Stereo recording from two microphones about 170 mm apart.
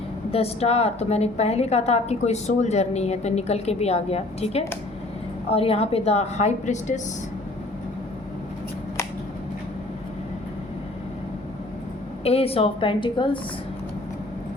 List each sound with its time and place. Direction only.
0.3 s a woman's voice: 35° left (ahead or behind)
12.2 s a woman's voice: 35° left (ahead or behind)